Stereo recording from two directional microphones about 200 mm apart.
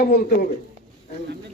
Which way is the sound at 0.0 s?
50° left (ahead or behind).